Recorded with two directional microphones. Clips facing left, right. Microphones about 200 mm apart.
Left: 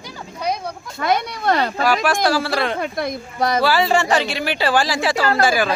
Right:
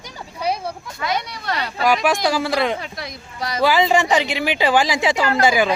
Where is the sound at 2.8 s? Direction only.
50° left (ahead or behind).